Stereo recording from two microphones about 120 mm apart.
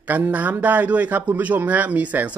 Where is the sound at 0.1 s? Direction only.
15° right (ahead or behind).